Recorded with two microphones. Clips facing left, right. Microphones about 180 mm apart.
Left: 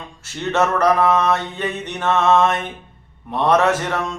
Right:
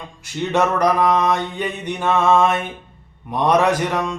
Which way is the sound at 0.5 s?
15° right (ahead or behind).